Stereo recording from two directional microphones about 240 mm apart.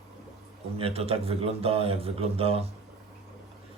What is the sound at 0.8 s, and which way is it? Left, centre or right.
Speech, right.